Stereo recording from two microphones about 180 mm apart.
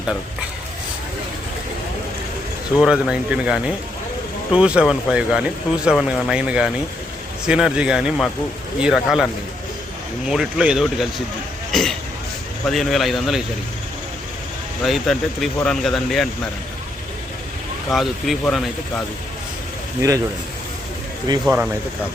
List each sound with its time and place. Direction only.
2.8 s speech: 5° right (ahead or behind)
11.7 s cough: centre (ahead or behind)
12.6 s speech: centre (ahead or behind)
14.8 s speech: centre (ahead or behind)
17.9 s speech: centre (ahead or behind)
20.0 s speech: 20° right (ahead or behind)
21.3 s speech: 25° right (ahead or behind)